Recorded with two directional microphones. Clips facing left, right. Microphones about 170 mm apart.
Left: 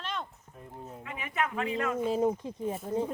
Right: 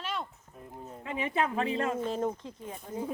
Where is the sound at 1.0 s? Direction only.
30° right (ahead or behind).